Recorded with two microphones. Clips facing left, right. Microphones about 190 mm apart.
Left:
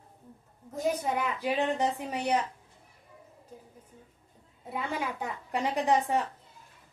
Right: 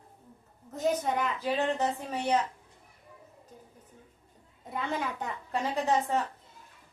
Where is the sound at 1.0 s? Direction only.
10° left (ahead or behind).